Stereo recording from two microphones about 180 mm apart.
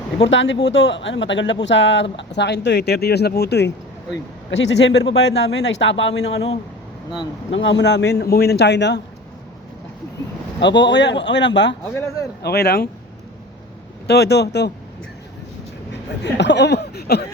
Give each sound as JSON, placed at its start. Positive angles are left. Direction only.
{"t": 0.2, "sound": "speech", "side_deg": 90}
{"t": 2.1, "sound": "speech", "side_deg": 75}
{"t": 4.5, "sound": "speech", "side_deg": 80}
{"t": 6.3, "sound": "speech", "side_deg": 35}
{"t": 7.6, "sound": "speech", "side_deg": 75}
{"t": 10.6, "sound": "speech", "side_deg": 75}
{"t": 11.9, "sound": "speech", "side_deg": 20}
{"t": 12.4, "sound": "speech", "side_deg": 60}
{"t": 14.1, "sound": "speech", "side_deg": 65}
{"t": 15.9, "sound": "speech", "side_deg": 75}